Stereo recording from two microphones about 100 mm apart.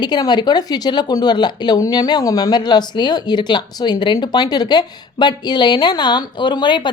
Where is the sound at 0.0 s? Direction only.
45° left (ahead or behind).